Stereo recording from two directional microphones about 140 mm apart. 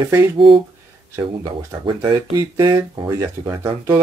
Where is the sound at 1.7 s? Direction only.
30° right (ahead or behind).